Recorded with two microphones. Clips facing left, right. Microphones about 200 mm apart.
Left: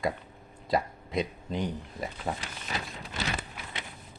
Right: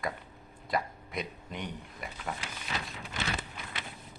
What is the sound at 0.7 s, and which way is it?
Speech, 25° left (ahead or behind).